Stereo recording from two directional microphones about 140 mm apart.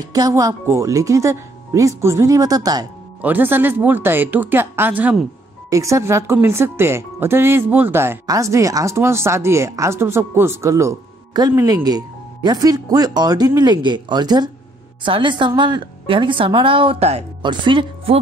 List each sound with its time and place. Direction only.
0.0 s speech: 25° right (ahead or behind)
3.2 s a woman's voice: 10° right (ahead or behind); by 17.2 s 45° right (ahead or behind)
17.4 s speech: 35° right (ahead or behind)